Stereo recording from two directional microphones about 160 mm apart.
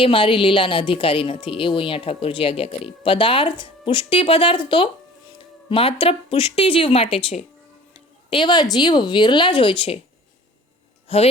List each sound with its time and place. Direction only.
0.0 s a woman's voice: 30° left (ahead or behind)
11.1 s a woman's voice: 40° left (ahead or behind)